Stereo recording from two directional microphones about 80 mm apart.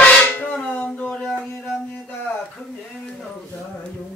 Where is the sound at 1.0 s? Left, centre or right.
Centre.